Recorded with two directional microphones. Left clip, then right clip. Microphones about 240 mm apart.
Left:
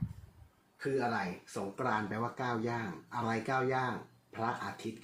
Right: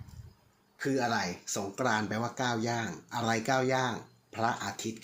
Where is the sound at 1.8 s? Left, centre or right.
Right.